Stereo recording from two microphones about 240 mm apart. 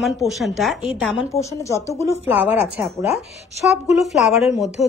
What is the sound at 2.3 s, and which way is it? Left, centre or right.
A woman's voice, centre.